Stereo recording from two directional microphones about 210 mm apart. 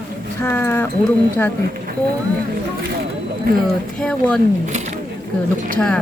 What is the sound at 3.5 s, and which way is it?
Speech, 45° right (ahead or behind).